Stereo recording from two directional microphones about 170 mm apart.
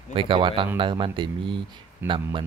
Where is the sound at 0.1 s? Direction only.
30° right (ahead or behind).